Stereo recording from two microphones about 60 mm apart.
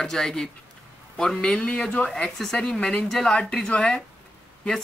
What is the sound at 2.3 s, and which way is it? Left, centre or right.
Speech, centre.